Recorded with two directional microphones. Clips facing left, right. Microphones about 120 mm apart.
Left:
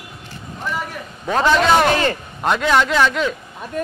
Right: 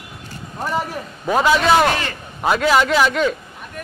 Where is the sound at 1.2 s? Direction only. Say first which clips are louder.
Even; 5° right (ahead or behind).